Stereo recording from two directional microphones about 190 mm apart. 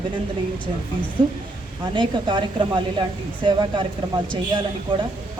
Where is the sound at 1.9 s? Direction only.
25° right (ahead or behind).